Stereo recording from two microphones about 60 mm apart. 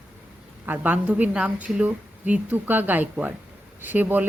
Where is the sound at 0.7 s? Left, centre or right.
Right.